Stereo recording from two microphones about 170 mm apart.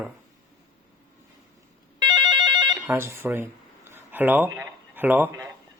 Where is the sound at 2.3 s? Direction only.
25° right (ahead or behind).